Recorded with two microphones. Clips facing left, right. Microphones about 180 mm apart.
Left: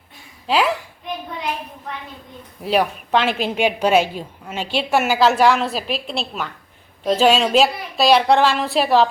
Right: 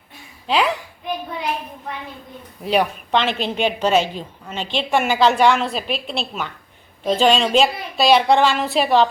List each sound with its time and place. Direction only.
0.4 s a woman's voice: 5° left (ahead or behind)
2.6 s a woman's voice: centre (ahead or behind)